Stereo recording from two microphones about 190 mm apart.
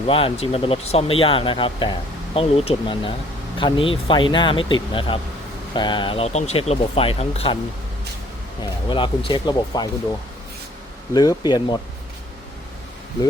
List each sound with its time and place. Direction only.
0.1 s speech: 30° left (ahead or behind)
8.9 s speech: 25° left (ahead or behind)
11.1 s speech: 20° left (ahead or behind)